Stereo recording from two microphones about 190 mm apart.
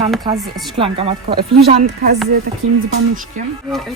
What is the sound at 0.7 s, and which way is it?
Speech, 30° right (ahead or behind).